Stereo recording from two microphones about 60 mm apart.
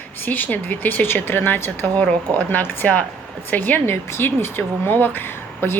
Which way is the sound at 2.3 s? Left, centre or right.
Left.